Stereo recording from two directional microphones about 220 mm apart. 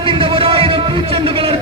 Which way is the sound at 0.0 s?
25° right (ahead or behind).